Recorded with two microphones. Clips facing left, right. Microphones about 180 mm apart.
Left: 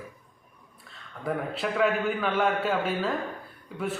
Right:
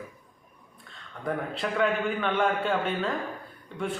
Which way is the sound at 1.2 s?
5° left (ahead or behind).